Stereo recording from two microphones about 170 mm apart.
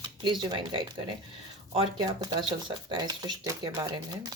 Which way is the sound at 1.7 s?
25° right (ahead or behind).